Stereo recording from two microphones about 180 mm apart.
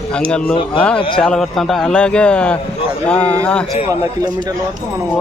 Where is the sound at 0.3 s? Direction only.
5° left (ahead or behind).